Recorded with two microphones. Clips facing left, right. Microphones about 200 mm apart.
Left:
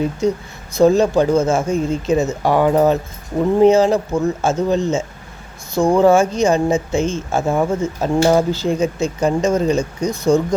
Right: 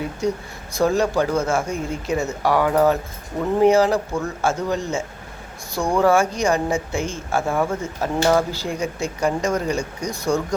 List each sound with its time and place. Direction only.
0.8 s speech: 20° left (ahead or behind)